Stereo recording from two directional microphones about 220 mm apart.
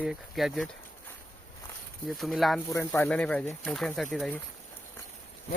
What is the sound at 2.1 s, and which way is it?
Speech, centre (ahead or behind).